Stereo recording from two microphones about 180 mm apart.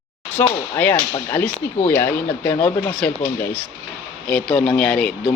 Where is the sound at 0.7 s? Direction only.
10° left (ahead or behind).